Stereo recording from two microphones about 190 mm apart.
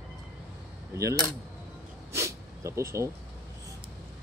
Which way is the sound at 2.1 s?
15° right (ahead or behind).